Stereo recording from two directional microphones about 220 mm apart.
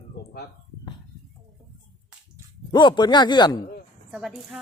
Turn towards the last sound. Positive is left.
turn(degrees=-5)  # may be behind; listen again after turning